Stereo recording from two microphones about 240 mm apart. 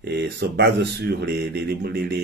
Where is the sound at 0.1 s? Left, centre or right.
Right.